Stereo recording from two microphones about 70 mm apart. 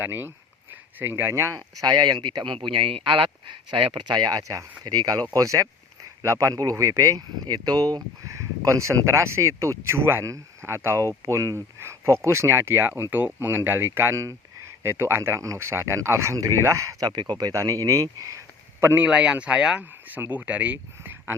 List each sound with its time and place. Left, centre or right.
0.0 s speech: right
6.5 s speech: right
8.3 s speech: right
17.1 s speech: right
17.5 s speech: right
18.9 s speech: centre
19.8 s speech: right